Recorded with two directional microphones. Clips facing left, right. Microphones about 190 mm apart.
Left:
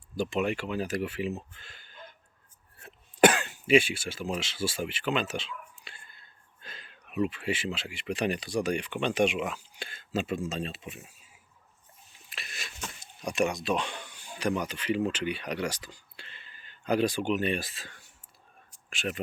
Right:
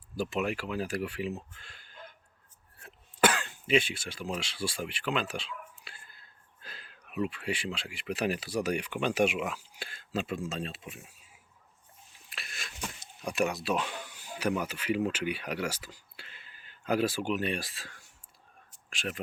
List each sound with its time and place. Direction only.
0.2 s speech: centre (ahead or behind)
3.2 s cough: 20° left (ahead or behind)
3.7 s speech: 10° left (ahead or behind)
12.3 s a sound: centre (ahead or behind)
13.2 s speech: 5° right (ahead or behind)
18.7 s whispering: centre (ahead or behind)